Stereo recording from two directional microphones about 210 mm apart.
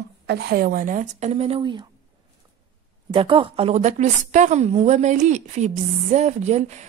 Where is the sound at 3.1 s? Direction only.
25° right (ahead or behind).